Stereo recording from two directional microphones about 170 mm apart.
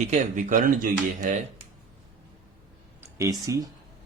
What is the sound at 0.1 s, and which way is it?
Speech, 45° right (ahead or behind).